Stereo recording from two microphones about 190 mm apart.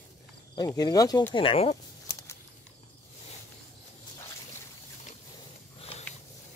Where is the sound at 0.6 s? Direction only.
20° left (ahead or behind).